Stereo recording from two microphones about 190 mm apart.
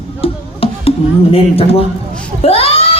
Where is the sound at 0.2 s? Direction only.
30° left (ahead or behind).